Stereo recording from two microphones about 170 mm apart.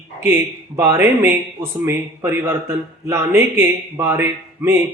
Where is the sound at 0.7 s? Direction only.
15° right (ahead or behind).